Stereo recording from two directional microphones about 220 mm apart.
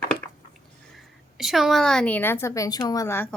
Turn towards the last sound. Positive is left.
turn(degrees=10)  # may be behind; listen again after turning